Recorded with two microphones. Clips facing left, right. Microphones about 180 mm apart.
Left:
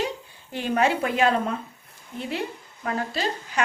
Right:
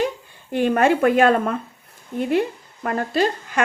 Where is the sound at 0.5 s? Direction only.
55° right (ahead or behind).